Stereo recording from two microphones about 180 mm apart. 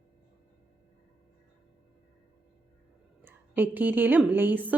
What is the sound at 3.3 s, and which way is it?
A woman's voice, 10° right (ahead or behind).